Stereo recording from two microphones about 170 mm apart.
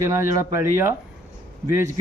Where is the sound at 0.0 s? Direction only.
15° right (ahead or behind).